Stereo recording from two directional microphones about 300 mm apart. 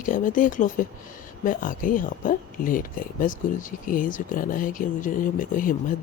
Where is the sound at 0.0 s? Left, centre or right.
Left.